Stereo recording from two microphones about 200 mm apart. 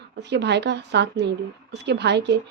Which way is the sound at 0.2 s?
60° right (ahead or behind).